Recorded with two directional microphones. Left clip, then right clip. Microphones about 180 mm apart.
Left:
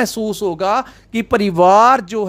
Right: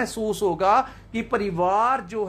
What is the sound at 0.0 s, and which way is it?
Speech, 35° left (ahead or behind).